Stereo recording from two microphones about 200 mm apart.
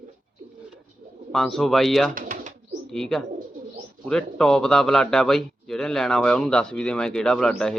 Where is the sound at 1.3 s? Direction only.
Centre (ahead or behind).